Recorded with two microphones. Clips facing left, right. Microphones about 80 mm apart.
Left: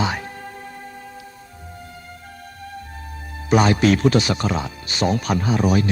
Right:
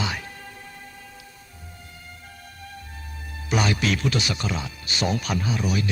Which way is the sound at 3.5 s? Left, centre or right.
Left.